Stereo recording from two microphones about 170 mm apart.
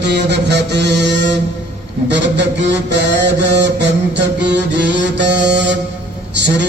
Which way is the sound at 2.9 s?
90° right.